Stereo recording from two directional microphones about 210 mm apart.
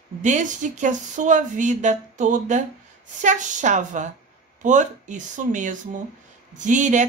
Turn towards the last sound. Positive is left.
turn(degrees=-35)  # may be behind; listen again after turning